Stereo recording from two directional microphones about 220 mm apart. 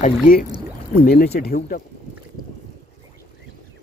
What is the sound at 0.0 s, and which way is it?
Speech, 40° left (ahead or behind).